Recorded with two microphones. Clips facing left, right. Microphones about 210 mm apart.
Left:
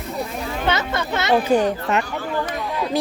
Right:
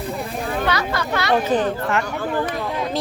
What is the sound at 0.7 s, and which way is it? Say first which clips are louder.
Speech: left 4 dB; 25° left (ahead or behind).